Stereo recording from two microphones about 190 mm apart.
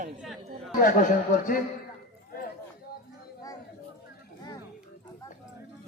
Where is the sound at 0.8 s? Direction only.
45° left (ahead or behind).